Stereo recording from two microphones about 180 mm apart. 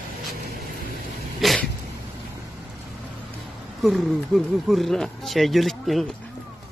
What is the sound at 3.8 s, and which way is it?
Speech, centre (ahead or behind).